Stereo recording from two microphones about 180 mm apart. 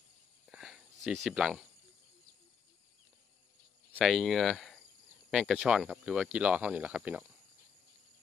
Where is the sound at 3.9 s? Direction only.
Centre (ahead or behind).